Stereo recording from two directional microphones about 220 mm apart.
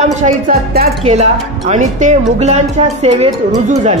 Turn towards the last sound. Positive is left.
turn(degrees=-30)  # may be behind; listen again after turning